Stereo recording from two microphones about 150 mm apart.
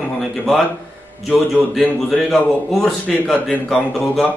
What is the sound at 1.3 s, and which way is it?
A man's voice, 5° left (ahead or behind).